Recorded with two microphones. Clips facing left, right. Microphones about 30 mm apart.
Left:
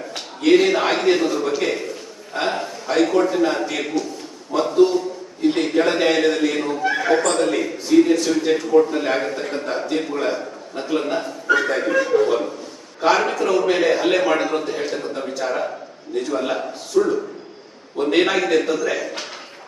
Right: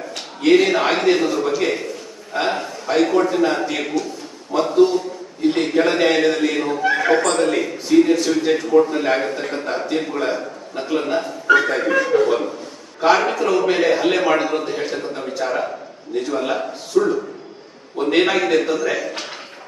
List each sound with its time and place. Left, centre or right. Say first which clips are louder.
0.4 s a man's voice: right 1 dB; centre
12.1 s a man's voice: right 1 dB; right
13.0 s a man's voice: right 2 dB; centre